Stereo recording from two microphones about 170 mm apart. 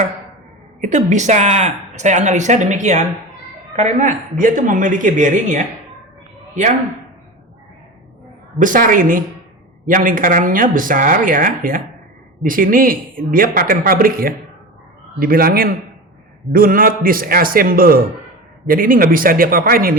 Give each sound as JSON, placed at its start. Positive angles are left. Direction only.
{"t": 0.8, "sound": "a woman's voice", "side_deg": -45}
{"t": 8.5, "sound": "a woman's voice", "side_deg": -50}